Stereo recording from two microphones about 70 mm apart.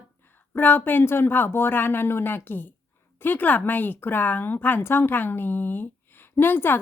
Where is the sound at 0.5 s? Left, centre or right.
Left.